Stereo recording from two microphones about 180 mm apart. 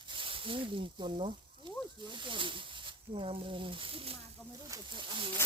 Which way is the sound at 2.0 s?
25° right (ahead or behind).